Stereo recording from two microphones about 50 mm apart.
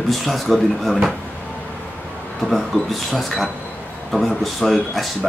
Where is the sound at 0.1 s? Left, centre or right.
Centre.